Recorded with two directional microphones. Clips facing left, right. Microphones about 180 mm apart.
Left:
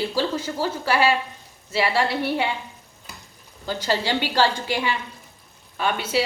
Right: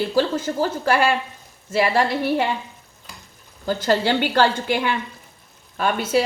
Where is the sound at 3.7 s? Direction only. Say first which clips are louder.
Right 5 dB; 50° right (ahead or behind).